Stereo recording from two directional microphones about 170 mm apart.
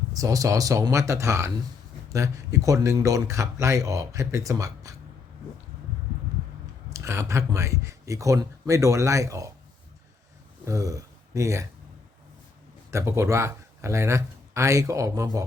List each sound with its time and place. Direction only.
0.1 s speech: 20° right (ahead or behind)
6.9 s speech: 15° right (ahead or behind)
10.7 s speech: 20° right (ahead or behind)
12.9 s speech: 15° right (ahead or behind)